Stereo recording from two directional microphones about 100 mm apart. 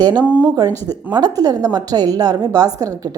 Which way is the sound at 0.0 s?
45° right (ahead or behind).